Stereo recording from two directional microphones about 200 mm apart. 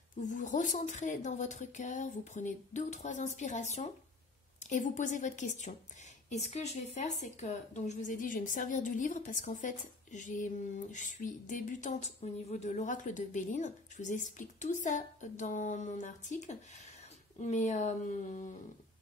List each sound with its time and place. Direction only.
0.2 s a woman's voice: 40° left (ahead or behind)